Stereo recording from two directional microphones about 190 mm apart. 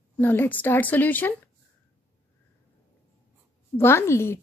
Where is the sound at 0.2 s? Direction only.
10° left (ahead or behind).